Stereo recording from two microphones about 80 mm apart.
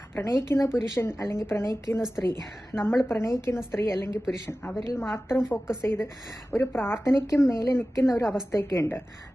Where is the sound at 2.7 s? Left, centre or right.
Left.